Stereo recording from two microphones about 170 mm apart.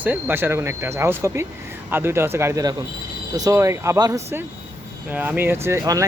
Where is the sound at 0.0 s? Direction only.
10° right (ahead or behind).